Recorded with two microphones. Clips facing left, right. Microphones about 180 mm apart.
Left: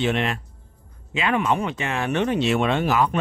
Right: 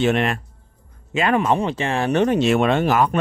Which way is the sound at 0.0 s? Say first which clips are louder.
Right 4 dB; 50° right (ahead or behind).